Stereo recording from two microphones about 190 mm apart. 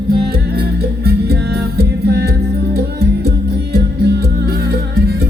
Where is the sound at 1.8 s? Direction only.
55° right (ahead or behind).